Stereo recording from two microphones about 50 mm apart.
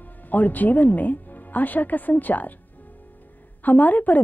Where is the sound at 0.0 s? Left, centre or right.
Left.